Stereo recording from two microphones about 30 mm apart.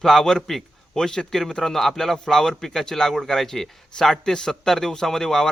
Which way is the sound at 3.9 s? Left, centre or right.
Left.